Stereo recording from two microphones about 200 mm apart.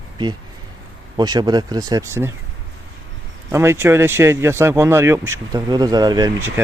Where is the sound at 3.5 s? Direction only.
15° right (ahead or behind).